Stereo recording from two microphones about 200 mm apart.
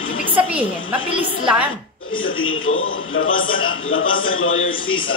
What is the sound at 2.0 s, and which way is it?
A man's voice, 90° left.